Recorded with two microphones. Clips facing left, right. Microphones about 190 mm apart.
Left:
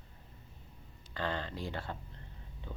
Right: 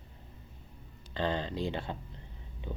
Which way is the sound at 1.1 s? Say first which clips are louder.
Right 5 dB; 20° right (ahead or behind).